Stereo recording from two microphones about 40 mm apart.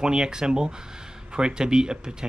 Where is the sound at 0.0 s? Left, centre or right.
Centre.